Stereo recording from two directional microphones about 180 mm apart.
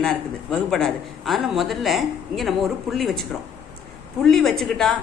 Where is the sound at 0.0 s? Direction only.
5° left (ahead or behind).